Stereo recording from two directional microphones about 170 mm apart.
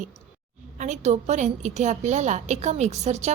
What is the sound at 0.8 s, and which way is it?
A woman's voice, 45° right (ahead or behind).